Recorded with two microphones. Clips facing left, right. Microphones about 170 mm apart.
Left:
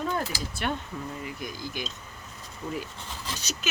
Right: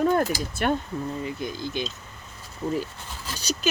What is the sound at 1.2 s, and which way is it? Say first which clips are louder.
Speech: right 6 dB; 25° right (ahead or behind).